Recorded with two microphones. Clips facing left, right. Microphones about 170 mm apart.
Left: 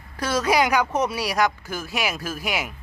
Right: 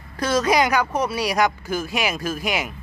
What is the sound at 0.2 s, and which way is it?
Speech, 10° left (ahead or behind).